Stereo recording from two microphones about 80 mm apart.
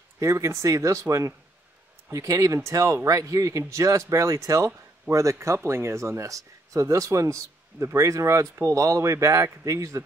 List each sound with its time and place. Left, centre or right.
0.2 s speech: right